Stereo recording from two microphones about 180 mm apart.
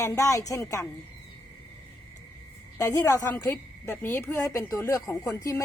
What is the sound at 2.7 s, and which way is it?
A woman's voice, 15° left (ahead or behind).